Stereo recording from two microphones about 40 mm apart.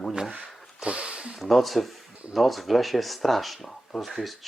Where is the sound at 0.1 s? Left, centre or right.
Right.